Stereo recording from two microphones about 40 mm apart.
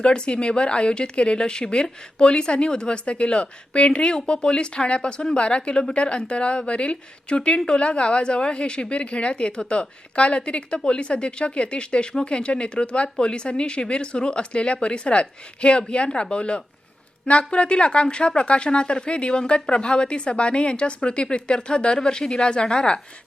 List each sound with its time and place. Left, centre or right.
0.0 s speech: left